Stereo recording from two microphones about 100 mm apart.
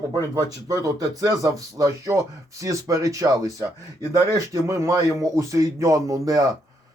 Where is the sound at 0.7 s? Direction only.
35° right (ahead or behind).